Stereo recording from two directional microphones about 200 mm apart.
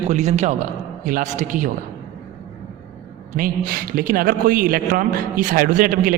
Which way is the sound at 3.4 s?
45° right (ahead or behind).